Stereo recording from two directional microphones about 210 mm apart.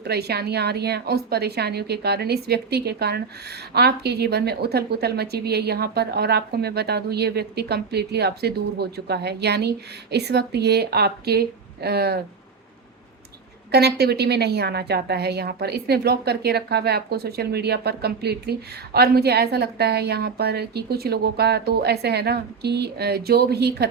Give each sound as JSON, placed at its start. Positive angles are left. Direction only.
{"t": 0.0, "sound": "a woman's voice", "side_deg": -50}
{"t": 13.7, "sound": "a woman's voice", "side_deg": -50}